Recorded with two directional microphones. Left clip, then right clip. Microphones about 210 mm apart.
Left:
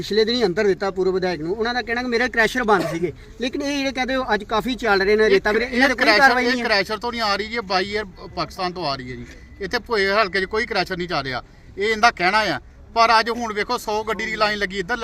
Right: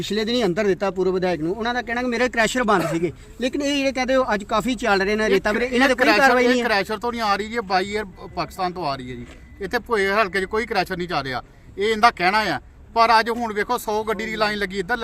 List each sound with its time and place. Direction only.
0.1 s speech: 50° right (ahead or behind)
6.5 s speech: centre (ahead or behind)